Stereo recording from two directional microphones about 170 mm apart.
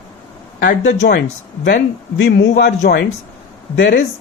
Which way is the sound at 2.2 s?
90° left.